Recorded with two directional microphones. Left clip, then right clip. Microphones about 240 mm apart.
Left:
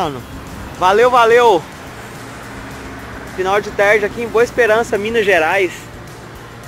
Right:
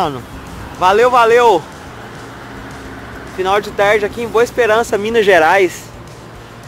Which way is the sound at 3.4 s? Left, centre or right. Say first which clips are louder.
Right 1 dB; centre.